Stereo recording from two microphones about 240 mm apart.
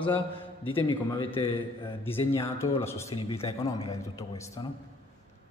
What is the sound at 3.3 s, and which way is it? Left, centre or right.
Speech, left.